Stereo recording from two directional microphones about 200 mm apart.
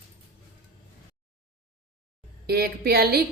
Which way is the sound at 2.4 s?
50° right (ahead or behind).